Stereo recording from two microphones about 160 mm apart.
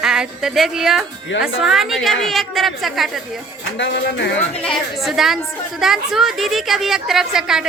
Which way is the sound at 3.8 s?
90° left.